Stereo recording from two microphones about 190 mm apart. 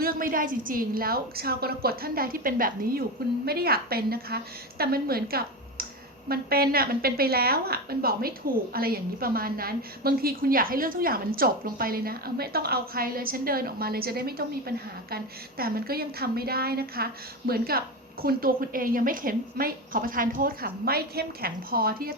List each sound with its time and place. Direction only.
0.0 s a woman's voice: 50° right (ahead or behind)